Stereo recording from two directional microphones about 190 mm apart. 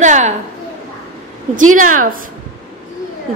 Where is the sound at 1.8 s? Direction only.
45° right (ahead or behind).